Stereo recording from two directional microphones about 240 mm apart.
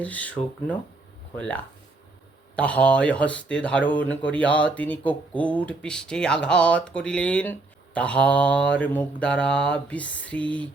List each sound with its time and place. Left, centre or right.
0.0 s speech: centre
2.6 s speech: centre